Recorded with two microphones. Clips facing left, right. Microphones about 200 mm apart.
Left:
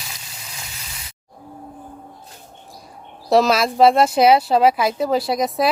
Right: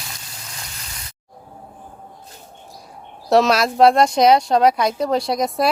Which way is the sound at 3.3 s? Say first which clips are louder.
Even; centre (ahead or behind).